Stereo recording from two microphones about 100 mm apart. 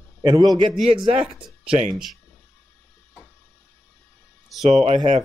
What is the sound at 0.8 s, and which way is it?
Speech, 65° right (ahead or behind).